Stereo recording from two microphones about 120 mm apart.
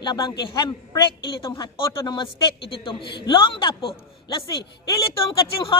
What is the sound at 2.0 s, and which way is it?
Speech, 45° left (ahead or behind).